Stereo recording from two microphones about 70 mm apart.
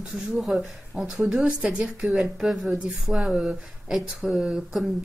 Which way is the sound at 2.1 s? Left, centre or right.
Centre.